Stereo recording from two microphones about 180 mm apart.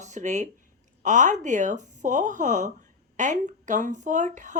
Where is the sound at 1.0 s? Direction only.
45° right (ahead or behind).